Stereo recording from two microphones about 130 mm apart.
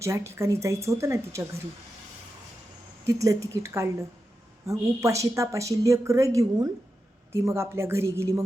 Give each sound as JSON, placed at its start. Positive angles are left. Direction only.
{"t": 0.0, "sound": "speech", "side_deg": -20}
{"t": 3.1, "sound": "speech", "side_deg": -25}